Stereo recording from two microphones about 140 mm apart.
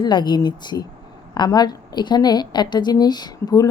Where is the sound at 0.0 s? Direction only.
30° left (ahead or behind).